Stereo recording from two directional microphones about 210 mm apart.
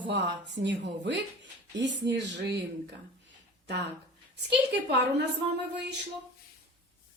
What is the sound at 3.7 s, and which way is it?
A woman's voice, 55° right (ahead or behind).